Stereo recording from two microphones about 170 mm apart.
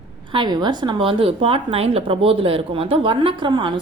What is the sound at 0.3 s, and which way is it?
A woman's voice, 25° right (ahead or behind).